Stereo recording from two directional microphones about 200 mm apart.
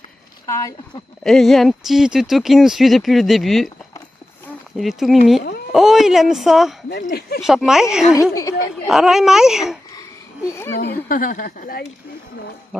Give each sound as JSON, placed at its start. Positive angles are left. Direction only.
{"t": 0.5, "sound": "speech", "side_deg": 15}
{"t": 1.2, "sound": "speech", "side_deg": 0}
{"t": 4.7, "sound": "speech", "side_deg": 0}
{"t": 6.9, "sound": "speech", "side_deg": 60}
{"t": 7.4, "sound": "speech", "side_deg": 0}
{"t": 8.1, "sound": "speech", "side_deg": 15}
{"t": 8.8, "sound": "speech", "side_deg": 0}
{"t": 11.1, "sound": "speech", "side_deg": 45}